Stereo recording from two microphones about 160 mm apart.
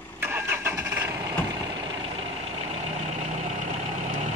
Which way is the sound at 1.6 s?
35° right (ahead or behind).